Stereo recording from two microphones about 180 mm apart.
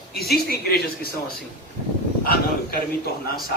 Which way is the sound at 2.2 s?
60° left (ahead or behind).